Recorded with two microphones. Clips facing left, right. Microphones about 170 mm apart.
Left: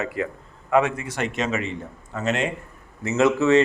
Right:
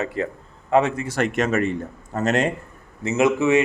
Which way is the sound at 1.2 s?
50° right (ahead or behind).